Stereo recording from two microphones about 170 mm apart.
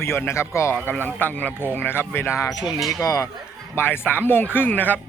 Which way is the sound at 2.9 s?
20° left (ahead or behind).